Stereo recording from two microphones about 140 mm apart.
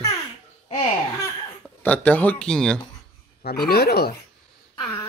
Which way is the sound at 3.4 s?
90° left.